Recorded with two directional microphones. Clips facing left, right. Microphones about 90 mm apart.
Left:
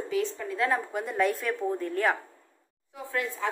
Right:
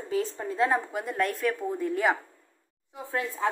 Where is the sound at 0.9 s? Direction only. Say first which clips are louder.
Left 2 dB; centre (ahead or behind).